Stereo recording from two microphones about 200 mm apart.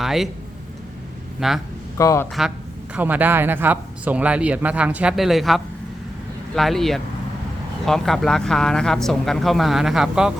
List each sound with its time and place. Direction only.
0.0 s a sound: centre (ahead or behind)
1.4 s speech: centre (ahead or behind)
2.0 s a man's voice: 15° left (ahead or behind)
2.9 s speech: 10° right (ahead or behind)